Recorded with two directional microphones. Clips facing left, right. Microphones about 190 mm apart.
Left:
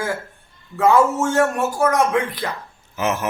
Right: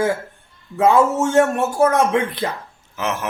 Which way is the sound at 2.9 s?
5° left (ahead or behind).